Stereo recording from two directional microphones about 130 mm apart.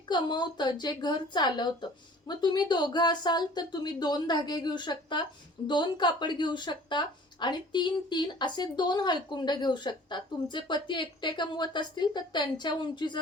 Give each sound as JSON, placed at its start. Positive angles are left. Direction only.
{"t": 0.1, "sound": "a woman's voice", "side_deg": 35}